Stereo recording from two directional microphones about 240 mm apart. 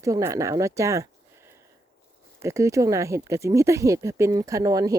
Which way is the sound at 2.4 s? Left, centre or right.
Centre.